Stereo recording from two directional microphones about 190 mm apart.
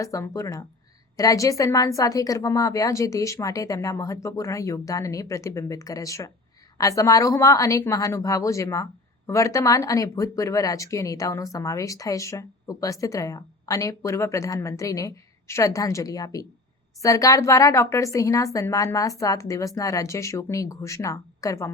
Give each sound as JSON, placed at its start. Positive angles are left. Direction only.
{"t": 0.0, "sound": "a woman's voice", "side_deg": 15}